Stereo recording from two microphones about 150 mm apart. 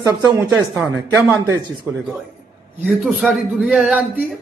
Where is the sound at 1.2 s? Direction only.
15° right (ahead or behind).